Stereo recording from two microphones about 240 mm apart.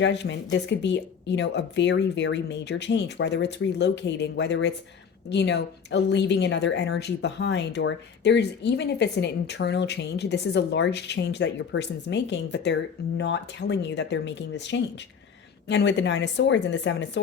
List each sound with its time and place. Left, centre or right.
0.0 s a woman's voice: left